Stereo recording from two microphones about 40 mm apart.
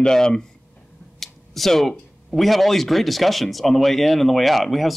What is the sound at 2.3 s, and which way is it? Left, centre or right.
Speech, centre.